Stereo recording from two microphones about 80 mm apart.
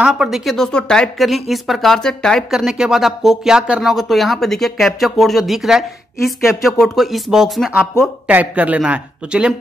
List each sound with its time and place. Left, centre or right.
0.0 s speech: centre
0.7 s speech: centre
2.5 s speech: centre
3.9 s speech: centre
8.3 s speech: centre